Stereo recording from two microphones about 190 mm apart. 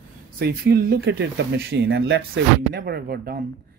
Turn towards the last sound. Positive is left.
turn(degrees=-55)  # may be behind; listen again after turning